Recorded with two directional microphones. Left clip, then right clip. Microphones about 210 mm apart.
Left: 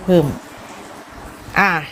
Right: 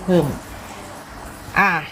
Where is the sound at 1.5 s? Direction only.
35° left (ahead or behind).